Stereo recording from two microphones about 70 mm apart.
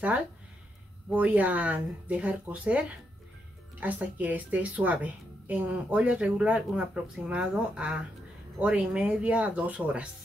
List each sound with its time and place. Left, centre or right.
1.1 s speech: right
3.8 s a woman's voice: right